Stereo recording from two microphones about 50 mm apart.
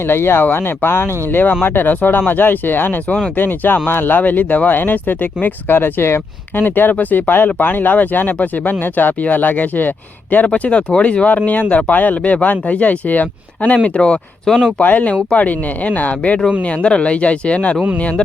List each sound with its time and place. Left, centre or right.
0.1 s speech: left
10.4 s speech: left
11.3 s speech: left
14.4 s speech: centre
14.8 s speech: left